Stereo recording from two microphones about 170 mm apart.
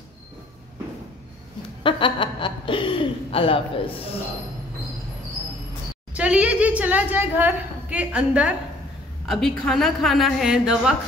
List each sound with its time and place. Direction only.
1.8 s speech: 30° left (ahead or behind)
6.1 s a woman's voice: 5° right (ahead or behind)